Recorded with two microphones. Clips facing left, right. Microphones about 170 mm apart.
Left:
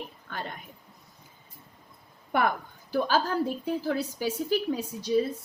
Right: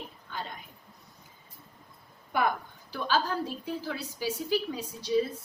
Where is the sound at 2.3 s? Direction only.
60° left (ahead or behind).